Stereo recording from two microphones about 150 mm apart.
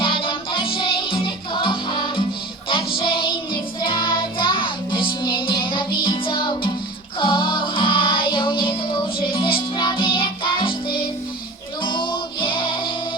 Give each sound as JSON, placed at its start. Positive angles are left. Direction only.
{"t": 0.0, "sound": "music", "side_deg": 35}
{"t": 2.6, "sound": "child singing", "side_deg": 35}
{"t": 6.1, "sound": "music", "side_deg": 35}
{"t": 11.8, "sound": "music", "side_deg": 35}